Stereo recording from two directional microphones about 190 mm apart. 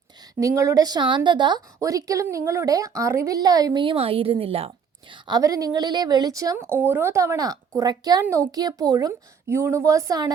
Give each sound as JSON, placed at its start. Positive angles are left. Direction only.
{"t": 0.3, "sound": "a woman's voice", "side_deg": -15}